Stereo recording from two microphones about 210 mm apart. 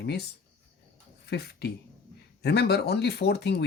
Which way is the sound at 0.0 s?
50° left (ahead or behind).